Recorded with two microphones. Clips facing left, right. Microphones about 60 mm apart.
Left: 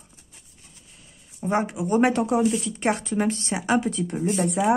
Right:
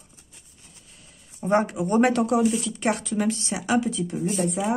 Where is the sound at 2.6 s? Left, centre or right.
Left.